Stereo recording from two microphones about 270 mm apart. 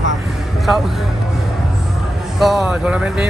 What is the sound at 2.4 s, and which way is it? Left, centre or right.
Speech, centre.